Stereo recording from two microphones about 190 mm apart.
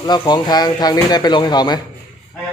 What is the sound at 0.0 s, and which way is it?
Speech, 20° left (ahead or behind).